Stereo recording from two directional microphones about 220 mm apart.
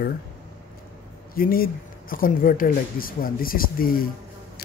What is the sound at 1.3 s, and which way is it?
Speech, 40° left (ahead or behind).